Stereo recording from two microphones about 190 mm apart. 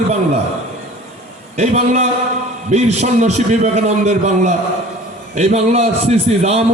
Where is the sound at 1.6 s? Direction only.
35° right (ahead or behind).